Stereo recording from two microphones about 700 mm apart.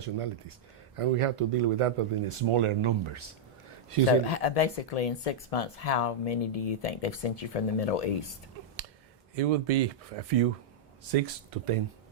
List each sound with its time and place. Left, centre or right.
0.0 s speech: right
4.3 s speech: left
9.3 s speech: right